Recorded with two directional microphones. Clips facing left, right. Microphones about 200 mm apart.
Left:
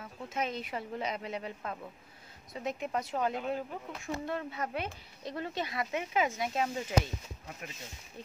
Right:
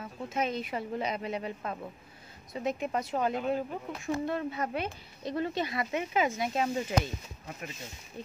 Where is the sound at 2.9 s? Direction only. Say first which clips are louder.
Right 2 dB; 20° right (ahead or behind).